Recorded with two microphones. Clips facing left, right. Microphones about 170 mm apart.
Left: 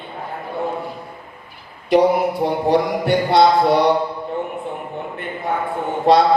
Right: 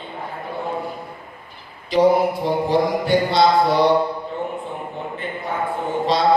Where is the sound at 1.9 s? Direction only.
65° left (ahead or behind).